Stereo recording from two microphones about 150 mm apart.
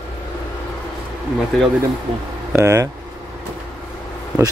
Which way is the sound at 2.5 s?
20° right (ahead or behind).